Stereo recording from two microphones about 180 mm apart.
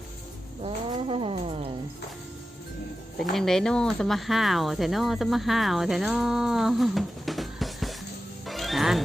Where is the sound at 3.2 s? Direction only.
Centre (ahead or behind).